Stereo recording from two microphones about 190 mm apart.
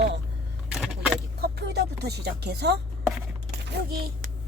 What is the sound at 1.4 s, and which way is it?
Speech, 60° right (ahead or behind).